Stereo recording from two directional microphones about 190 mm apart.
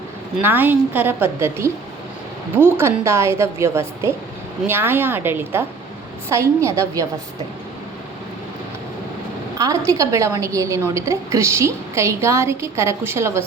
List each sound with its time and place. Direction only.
0.3 s a woman's voice: 10° right (ahead or behind)
9.6 s a woman's voice: 15° right (ahead or behind)